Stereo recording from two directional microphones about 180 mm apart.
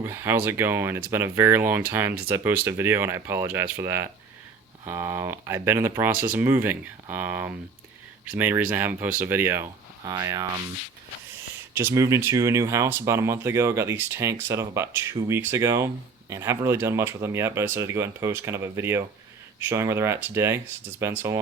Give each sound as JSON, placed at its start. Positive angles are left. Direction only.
{"t": 0.0, "sound": "speech", "side_deg": -15}
{"t": 11.7, "sound": "speech", "side_deg": -15}